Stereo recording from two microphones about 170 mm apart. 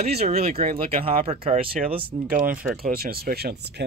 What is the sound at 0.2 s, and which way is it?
Speech, 40° right (ahead or behind).